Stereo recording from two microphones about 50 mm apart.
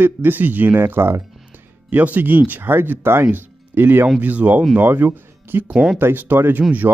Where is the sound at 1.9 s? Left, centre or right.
Right.